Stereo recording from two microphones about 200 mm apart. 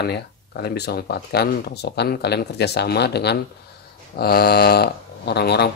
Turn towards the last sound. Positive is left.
turn(degrees=55)  # may be behind; listen again after turning